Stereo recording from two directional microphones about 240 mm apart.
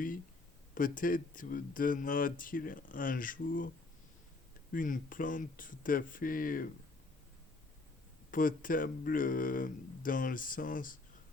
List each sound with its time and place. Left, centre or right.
0.7 s speech: left
4.7 s speech: left
8.3 s speech: left